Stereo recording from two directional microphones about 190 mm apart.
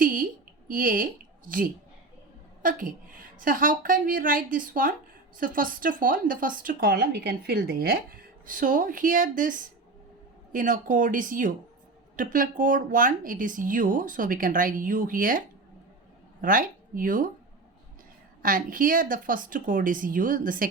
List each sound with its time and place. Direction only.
0.0 s a sound: 45° right (ahead or behind)
0.7 s a woman's voice: 45° right (ahead or behind)
18.4 s speech: 45° right (ahead or behind)